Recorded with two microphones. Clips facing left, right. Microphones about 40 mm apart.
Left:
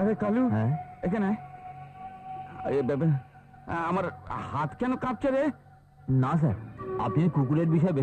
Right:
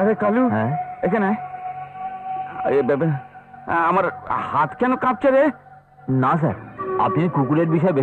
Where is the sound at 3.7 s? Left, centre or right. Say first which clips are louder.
Right 11 dB; right.